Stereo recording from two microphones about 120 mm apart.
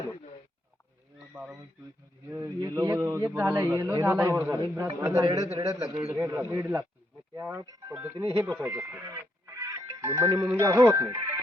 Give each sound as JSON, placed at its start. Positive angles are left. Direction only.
{"t": 1.3, "sound": "a sound", "side_deg": -25}
{"t": 2.3, "sound": "a man's voice", "side_deg": -30}
{"t": 6.1, "sound": "a man's voice", "side_deg": -20}
{"t": 9.5, "sound": "music", "side_deg": -25}
{"t": 10.8, "sound": "a man's voice", "side_deg": -20}